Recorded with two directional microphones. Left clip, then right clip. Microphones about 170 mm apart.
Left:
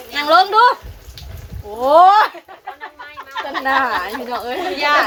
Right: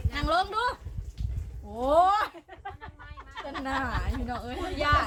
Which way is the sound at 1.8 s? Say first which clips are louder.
Left 13 dB; 5° left (ahead or behind).